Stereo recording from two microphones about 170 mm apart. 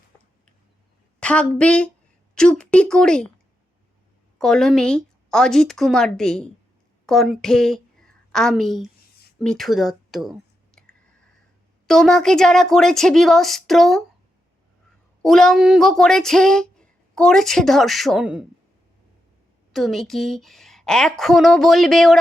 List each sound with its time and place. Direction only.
1.2 s a woman's voice: 5° left (ahead or behind)
4.4 s speech: 5° left (ahead or behind)
11.9 s speech: centre (ahead or behind)
15.2 s speech: 5° left (ahead or behind)
19.7 s speech: centre (ahead or behind)